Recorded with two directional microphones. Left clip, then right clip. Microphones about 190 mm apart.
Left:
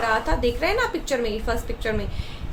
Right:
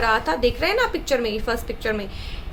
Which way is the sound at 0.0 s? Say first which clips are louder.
Right 2 dB; 20° right (ahead or behind).